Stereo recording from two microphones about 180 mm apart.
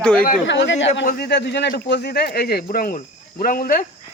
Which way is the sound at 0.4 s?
80° left.